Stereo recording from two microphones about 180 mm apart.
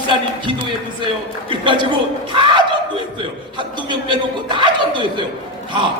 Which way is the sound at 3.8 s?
25° right (ahead or behind).